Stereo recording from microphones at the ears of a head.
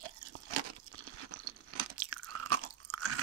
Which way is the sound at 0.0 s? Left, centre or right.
Right.